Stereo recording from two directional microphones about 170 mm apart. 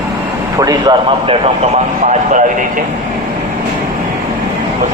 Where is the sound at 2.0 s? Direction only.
45° right (ahead or behind).